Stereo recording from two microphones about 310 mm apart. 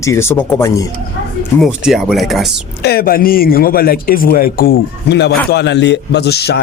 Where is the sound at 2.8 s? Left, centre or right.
Left.